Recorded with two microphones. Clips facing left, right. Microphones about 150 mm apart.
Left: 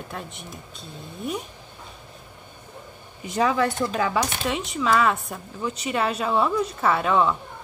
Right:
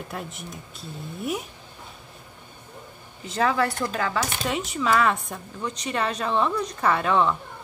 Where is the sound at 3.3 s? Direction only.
15° left (ahead or behind).